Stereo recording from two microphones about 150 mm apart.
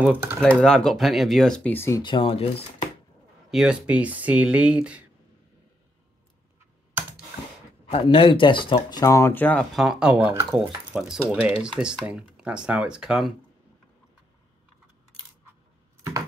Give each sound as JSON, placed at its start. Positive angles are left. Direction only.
{"t": 0.0, "sound": "speech", "side_deg": -10}
{"t": 0.6, "sound": "speech", "side_deg": 5}
{"t": 2.0, "sound": "speech", "side_deg": 35}
{"t": 3.4, "sound": "speech", "side_deg": -5}
{"t": 7.9, "sound": "speech", "side_deg": 35}
{"t": 9.0, "sound": "speech", "side_deg": 20}
{"t": 9.8, "sound": "speech", "side_deg": -5}